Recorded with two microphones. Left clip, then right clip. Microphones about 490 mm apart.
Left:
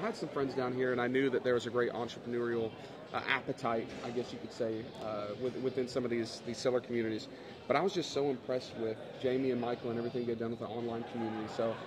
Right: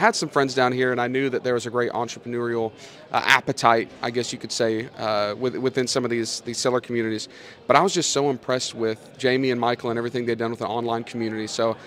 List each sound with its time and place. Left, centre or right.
0.0 s speech: right
5.8 s speech: right